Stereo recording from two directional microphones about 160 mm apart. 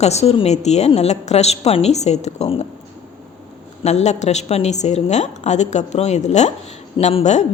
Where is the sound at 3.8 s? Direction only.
45° left (ahead or behind).